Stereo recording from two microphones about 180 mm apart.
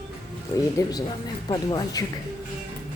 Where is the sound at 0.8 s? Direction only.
20° left (ahead or behind).